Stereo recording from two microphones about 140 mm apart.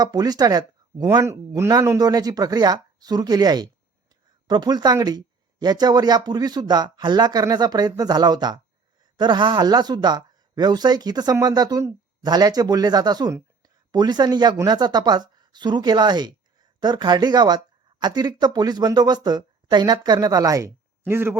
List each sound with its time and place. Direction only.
0.0 s speech: 30° right (ahead or behind)